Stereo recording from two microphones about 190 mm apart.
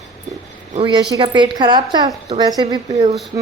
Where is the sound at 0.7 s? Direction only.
25° right (ahead or behind).